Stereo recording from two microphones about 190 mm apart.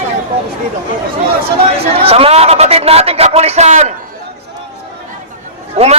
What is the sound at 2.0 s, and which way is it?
A man's voice, 30° right (ahead or behind).